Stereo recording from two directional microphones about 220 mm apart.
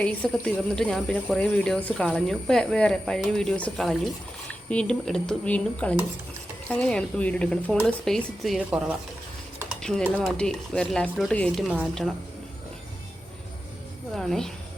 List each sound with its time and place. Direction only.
0.0 s speech: 5° left (ahead or behind)
14.2 s speech: centre (ahead or behind)